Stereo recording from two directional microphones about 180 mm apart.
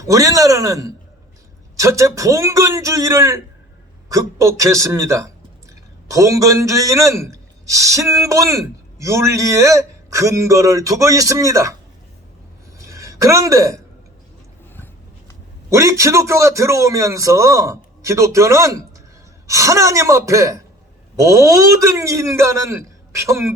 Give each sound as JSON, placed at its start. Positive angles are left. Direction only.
{"t": 0.0, "sound": "a man's voice", "side_deg": -20}
{"t": 12.9, "sound": "a man's voice", "side_deg": -15}
{"t": 15.7, "sound": "speech", "side_deg": -15}